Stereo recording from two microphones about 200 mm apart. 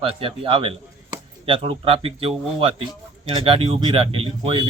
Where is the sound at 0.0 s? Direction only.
25° right (ahead or behind).